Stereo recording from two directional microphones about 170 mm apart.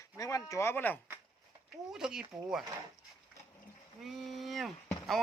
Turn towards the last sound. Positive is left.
turn(degrees=0)  # may be behind; listen again after turning